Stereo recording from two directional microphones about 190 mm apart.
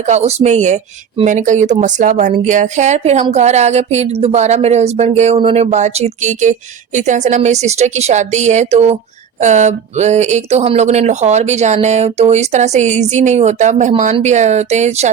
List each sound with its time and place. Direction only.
0.1 s speech: 35° right (ahead or behind)